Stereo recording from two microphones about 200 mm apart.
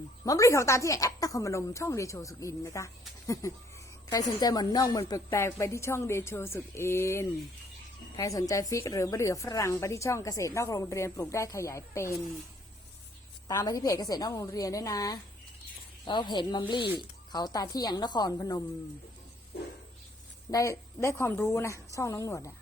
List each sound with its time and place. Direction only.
0.3 s a woman's voice: 15° left (ahead or behind)
4.1 s a woman's voice: 20° left (ahead or behind)
13.5 s a woman's voice: 15° left (ahead or behind)
20.5 s a woman's voice: 15° left (ahead or behind)